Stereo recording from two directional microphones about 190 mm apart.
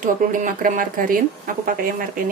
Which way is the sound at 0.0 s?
45° right (ahead or behind).